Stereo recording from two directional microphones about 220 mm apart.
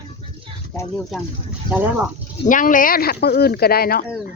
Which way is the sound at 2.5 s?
35° left (ahead or behind).